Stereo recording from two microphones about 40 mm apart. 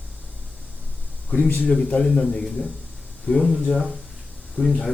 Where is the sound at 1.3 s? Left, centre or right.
Left.